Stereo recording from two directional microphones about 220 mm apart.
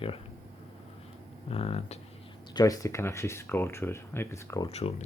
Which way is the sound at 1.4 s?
25° left (ahead or behind).